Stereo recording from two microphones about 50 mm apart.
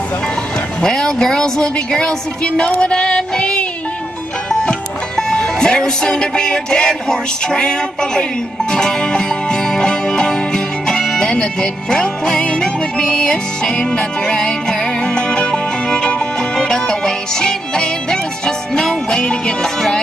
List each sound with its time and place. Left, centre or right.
0.8 s a woman's voice: centre
8.7 s music: centre